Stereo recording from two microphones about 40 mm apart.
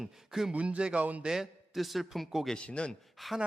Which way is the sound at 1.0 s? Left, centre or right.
Right.